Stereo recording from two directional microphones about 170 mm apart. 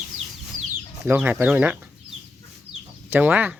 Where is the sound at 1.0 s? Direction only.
10° right (ahead or behind).